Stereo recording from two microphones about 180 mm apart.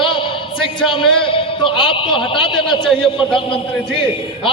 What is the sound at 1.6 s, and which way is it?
A man's voice, 30° left (ahead or behind).